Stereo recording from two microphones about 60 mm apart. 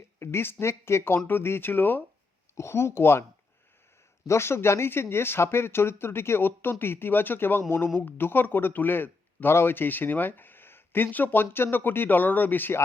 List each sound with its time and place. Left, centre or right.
0.2 s speech: left
2.6 s speech: left
4.3 s speech: left